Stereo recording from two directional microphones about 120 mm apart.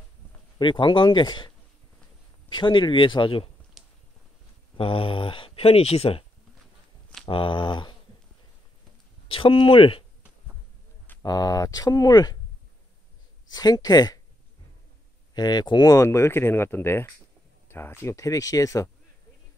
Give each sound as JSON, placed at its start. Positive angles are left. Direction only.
{"t": 0.6, "sound": "speech", "side_deg": 40}
{"t": 2.5, "sound": "speech", "side_deg": 40}
{"t": 3.8, "sound": "a sound", "side_deg": 0}
{"t": 4.7, "sound": "speech", "side_deg": 50}
{"t": 7.2, "sound": "speech", "side_deg": 45}
{"t": 9.3, "sound": "speech", "side_deg": 50}
{"t": 11.2, "sound": "speech", "side_deg": 30}
{"t": 13.5, "sound": "speech", "side_deg": 35}
{"t": 15.3, "sound": "speech", "side_deg": 35}